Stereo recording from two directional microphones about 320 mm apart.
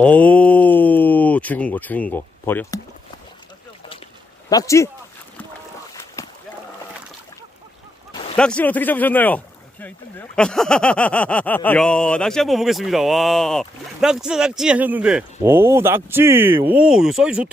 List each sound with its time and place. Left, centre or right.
0.0 s speech: centre
4.5 s speech: centre
8.1 s a sound: centre
8.4 s speech: centre